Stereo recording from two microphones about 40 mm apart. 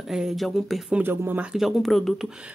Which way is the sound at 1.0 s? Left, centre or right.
Right.